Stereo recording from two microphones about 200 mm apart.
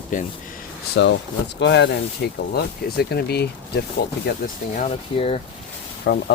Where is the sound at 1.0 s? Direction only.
60° left (ahead or behind).